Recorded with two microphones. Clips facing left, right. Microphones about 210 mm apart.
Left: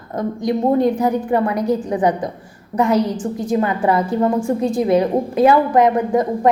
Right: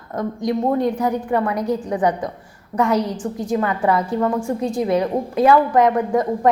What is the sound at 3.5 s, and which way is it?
A woman's voice, 25° left (ahead or behind).